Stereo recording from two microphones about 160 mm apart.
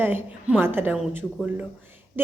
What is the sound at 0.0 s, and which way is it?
Speech, 10° right (ahead or behind).